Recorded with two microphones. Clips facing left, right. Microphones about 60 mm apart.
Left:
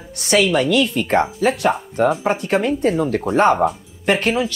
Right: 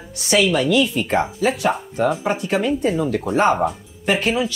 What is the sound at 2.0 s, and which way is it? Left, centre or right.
Speech, left.